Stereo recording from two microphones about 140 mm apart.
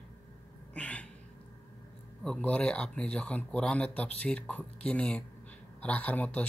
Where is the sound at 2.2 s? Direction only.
5° left (ahead or behind).